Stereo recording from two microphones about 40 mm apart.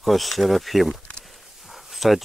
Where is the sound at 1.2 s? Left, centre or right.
Centre.